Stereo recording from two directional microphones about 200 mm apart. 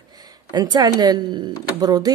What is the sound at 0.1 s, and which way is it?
Speech, 20° right (ahead or behind).